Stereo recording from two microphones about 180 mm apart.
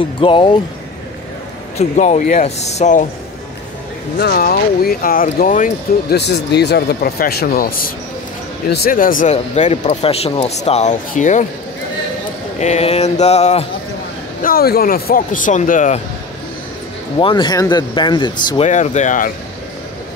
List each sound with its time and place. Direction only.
0.2 s speech: 30° left (ahead or behind)
1.8 s speech: 40° left (ahead or behind)
4.2 s speech: 55° left (ahead or behind)
6.1 s speech: 70° left (ahead or behind); by 11.4 s 45° left (ahead or behind)
12.5 s speech: 40° left (ahead or behind)
14.4 s speech: 55° left (ahead or behind)
17.2 s speech: 25° left (ahead or behind)
18.7 s speech: 40° left (ahead or behind)